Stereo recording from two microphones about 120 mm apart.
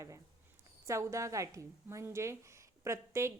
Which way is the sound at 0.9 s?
25° right (ahead or behind).